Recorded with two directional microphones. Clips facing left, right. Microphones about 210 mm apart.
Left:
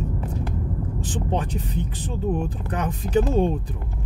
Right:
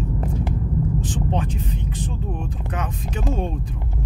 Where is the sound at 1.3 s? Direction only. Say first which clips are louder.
Even; 35° left (ahead or behind).